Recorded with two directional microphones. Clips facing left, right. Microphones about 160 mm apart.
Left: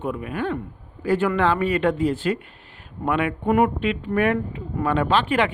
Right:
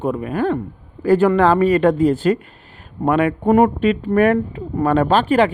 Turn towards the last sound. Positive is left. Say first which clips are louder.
# right 6 dB
turn(degrees=-40)  # may be behind; listen again after turning